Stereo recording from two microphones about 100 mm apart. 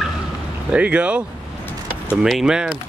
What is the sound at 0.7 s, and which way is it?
Speech, 10° right (ahead or behind).